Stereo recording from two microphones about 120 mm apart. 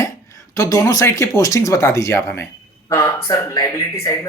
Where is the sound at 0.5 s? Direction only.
25° left (ahead or behind).